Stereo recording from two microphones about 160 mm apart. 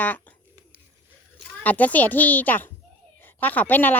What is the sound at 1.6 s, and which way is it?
Speech, 10° left (ahead or behind).